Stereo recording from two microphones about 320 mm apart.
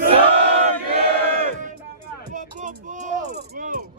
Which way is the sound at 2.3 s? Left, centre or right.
Right.